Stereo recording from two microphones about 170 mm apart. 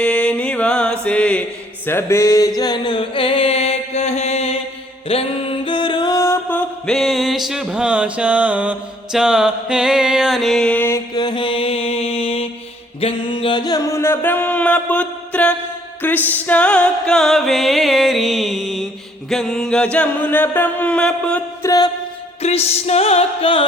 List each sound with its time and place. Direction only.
0.0 s mantra: 5° left (ahead or behind)
1.9 s music: 15° left (ahead or behind)
2.6 s mantra: 25° left (ahead or behind); by 8.7 s 10° right (ahead or behind)
9.1 s music: 5° right (ahead or behind)
21.6 s mantra: 20° left (ahead or behind)
22.4 s music: 40° left (ahead or behind)